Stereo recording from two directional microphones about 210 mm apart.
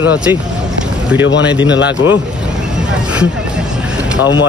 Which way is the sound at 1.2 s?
60° left (ahead or behind).